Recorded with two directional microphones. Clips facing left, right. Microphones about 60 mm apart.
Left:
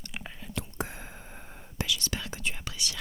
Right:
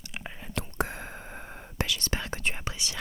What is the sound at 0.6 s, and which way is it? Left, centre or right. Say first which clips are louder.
Whispering: right 4 dB; right.